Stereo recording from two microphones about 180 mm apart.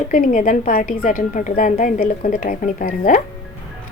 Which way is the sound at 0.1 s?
45° left (ahead or behind).